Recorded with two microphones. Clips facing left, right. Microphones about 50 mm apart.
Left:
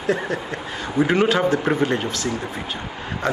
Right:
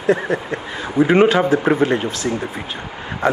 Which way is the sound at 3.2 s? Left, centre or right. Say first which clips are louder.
Right 5 dB; right.